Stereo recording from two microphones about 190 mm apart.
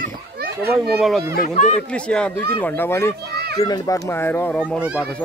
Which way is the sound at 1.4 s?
40° left (ahead or behind).